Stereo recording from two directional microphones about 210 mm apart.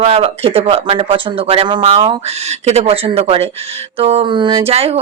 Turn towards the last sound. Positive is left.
turn(degrees=-30)  # may be behind; listen again after turning